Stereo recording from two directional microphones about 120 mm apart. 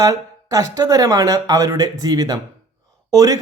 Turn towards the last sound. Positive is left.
turn(degrees=-30)  # may be behind; listen again after turning